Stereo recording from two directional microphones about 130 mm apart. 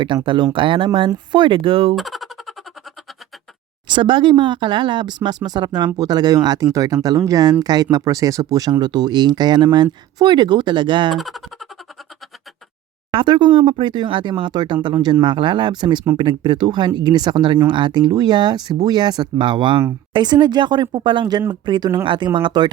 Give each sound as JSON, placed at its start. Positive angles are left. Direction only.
{"t": 0.1, "sound": "speech", "side_deg": -35}
{"t": 2.0, "sound": "boing", "side_deg": 0}
{"t": 3.8, "sound": "speech", "side_deg": -40}
{"t": 11.1, "sound": "speech", "side_deg": 0}
{"t": 13.1, "sound": "speech", "side_deg": -40}